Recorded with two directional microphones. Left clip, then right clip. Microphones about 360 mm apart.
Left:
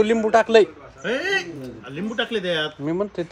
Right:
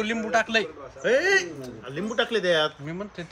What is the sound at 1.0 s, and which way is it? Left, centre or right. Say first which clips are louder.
Speech: right 2 dB; centre.